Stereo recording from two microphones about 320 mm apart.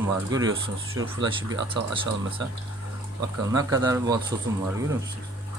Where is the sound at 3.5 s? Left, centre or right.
Centre.